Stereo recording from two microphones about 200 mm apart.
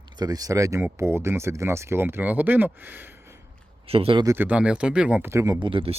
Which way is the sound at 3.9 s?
30° right (ahead or behind).